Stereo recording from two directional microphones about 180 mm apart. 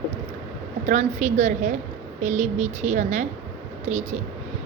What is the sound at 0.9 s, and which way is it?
A woman's voice, 40° right (ahead or behind).